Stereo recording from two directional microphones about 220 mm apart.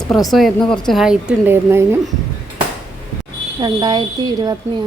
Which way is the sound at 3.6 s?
20° right (ahead or behind).